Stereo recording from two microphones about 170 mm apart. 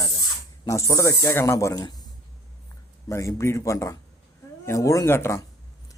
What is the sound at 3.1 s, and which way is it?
Speech, 15° left (ahead or behind).